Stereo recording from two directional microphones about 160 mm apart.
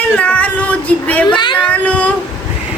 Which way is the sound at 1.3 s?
30° left (ahead or behind).